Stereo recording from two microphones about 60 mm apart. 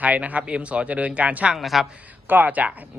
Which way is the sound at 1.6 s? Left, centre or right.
Centre.